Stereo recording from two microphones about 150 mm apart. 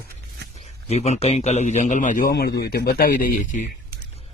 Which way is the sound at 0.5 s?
45° left (ahead or behind).